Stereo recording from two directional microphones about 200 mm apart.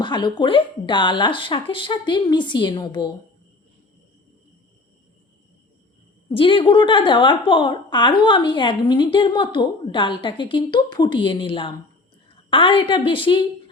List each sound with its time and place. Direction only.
0.0 s a woman's voice: 20° left (ahead or behind)
6.3 s a woman's voice: 25° left (ahead or behind)